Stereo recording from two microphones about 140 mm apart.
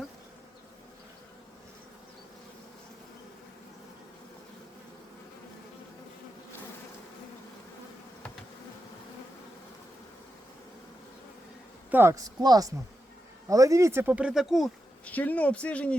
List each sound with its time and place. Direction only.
11.9 s speech: 15° right (ahead or behind); by 15.1 s centre (ahead or behind)
15.1 s speech: 10° left (ahead or behind)